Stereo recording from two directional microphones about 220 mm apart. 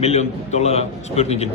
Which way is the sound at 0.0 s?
30° left (ahead or behind).